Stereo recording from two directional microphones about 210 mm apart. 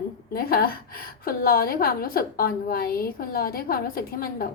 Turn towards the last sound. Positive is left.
turn(degrees=45)  # may be behind; listen again after turning